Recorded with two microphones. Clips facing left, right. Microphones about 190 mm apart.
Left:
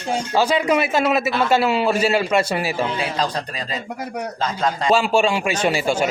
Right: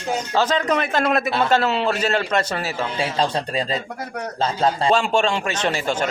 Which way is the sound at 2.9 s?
25° right (ahead or behind).